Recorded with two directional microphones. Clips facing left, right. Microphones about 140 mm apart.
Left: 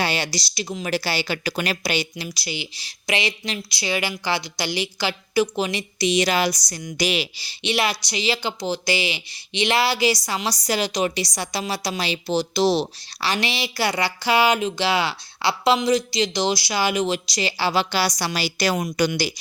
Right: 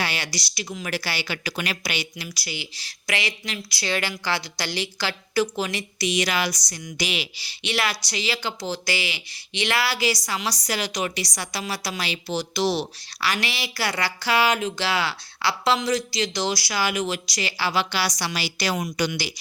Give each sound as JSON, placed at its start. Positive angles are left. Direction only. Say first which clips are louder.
{"t": 0.0, "sound": "a woman's voice", "louder": "left 5 dB", "side_deg": 25}
{"t": 7.6, "sound": "a woman's voice", "louder": "left 3 dB", "side_deg": 20}